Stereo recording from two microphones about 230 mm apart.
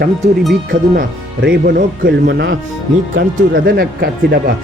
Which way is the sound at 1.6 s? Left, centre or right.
Right.